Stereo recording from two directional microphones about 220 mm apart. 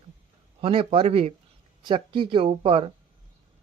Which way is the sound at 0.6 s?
25° right (ahead or behind).